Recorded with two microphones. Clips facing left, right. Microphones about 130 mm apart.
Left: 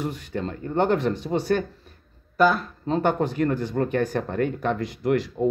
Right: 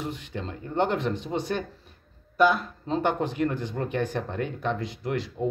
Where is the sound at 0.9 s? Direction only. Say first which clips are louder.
Left 4 dB; 40° left (ahead or behind).